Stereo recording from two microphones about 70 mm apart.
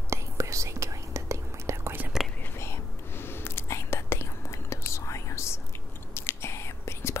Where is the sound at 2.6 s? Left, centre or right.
Left.